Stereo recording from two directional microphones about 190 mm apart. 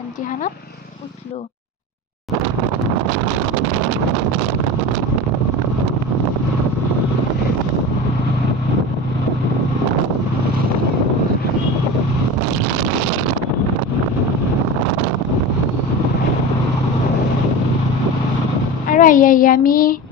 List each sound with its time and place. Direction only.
18.9 s a woman's voice: 45° left (ahead or behind)